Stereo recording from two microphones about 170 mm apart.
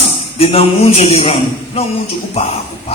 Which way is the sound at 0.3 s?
35° left (ahead or behind).